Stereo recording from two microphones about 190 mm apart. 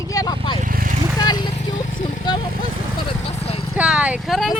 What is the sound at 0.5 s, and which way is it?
Speech, 45° right (ahead or behind).